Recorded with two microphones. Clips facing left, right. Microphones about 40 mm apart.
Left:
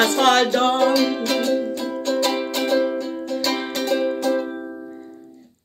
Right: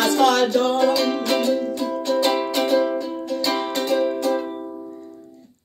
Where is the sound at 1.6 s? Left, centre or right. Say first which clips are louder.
Right 1 dB; centre.